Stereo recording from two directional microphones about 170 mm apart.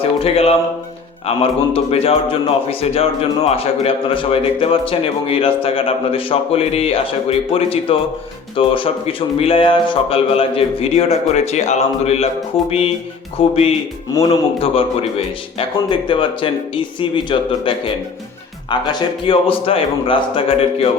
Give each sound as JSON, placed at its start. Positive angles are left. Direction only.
{"t": 0.2, "sound": "a man's voice", "side_deg": 35}